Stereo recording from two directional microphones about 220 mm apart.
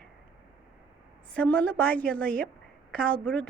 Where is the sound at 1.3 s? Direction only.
5° left (ahead or behind).